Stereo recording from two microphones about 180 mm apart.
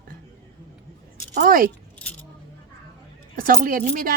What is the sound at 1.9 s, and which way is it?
Keys jangling, 10° left (ahead or behind).